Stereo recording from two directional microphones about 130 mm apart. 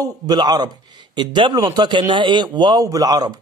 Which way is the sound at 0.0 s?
30° right (ahead or behind).